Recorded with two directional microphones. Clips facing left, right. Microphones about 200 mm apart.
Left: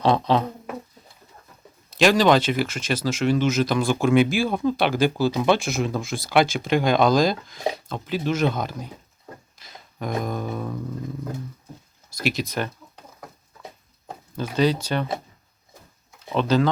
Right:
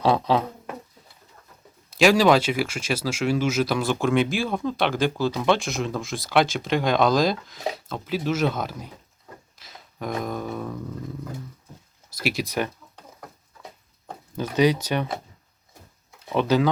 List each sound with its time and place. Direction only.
0.0 s speech: 5° right (ahead or behind)
2.0 s speech: 5° right (ahead or behind)
9.6 s a sound: centre (ahead or behind)
12.2 s speech: 10° right (ahead or behind)
14.5 s speech: 15° right (ahead or behind)
16.3 s speech: 15° right (ahead or behind)